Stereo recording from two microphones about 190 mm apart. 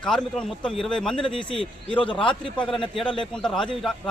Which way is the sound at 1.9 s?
25° left (ahead or behind).